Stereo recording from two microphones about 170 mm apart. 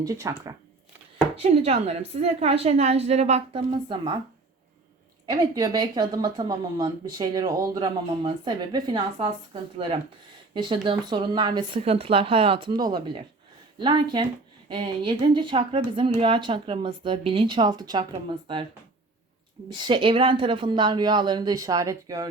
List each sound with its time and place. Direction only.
0.0 s speech: 20° right (ahead or behind)
1.4 s a woman's voice: 40° right (ahead or behind)
5.2 s a woman's voice: 20° right (ahead or behind)
19.7 s speech: 25° right (ahead or behind)